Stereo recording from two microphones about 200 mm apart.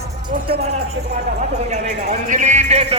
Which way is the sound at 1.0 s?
55° right (ahead or behind).